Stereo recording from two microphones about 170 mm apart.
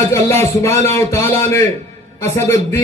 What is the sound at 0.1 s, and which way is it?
A man's voice, 15° left (ahead or behind).